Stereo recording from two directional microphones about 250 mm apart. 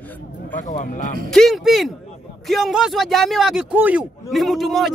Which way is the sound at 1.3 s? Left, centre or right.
Centre.